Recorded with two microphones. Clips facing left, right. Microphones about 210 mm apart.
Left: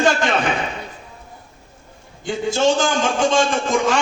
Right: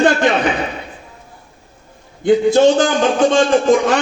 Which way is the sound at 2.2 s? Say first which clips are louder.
Right 8 dB; 60° right (ahead or behind).